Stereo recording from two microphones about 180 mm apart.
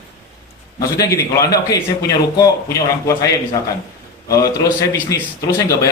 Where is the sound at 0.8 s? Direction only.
20° left (ahead or behind).